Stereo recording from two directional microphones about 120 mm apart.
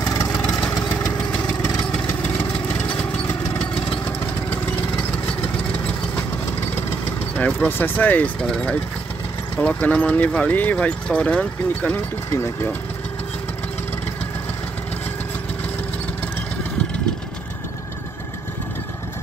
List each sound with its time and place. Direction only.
0.2 s vehicle: 25° left (ahead or behind)
2.9 s lawn mower: 10° left (ahead or behind)
7.3 s speech: 15° left (ahead or behind)